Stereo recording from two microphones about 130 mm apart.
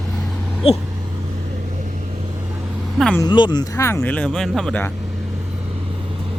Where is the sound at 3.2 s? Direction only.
35° left (ahead or behind); by 4.9 s 10° left (ahead or behind).